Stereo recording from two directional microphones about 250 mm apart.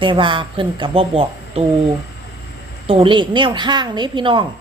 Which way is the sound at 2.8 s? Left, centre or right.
Right.